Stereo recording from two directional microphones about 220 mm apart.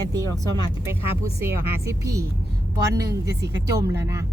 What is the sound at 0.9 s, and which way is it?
Speech, 10° right (ahead or behind).